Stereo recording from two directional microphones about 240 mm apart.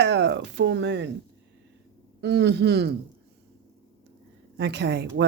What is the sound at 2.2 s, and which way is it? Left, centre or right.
Speech, right.